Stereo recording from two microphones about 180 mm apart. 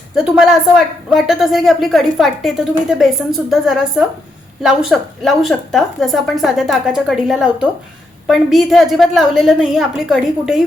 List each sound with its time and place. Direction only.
0.3 s a woman's voice: 5° right (ahead or behind)